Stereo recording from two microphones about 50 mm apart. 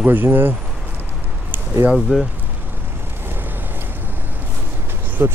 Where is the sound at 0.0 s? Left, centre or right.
Right.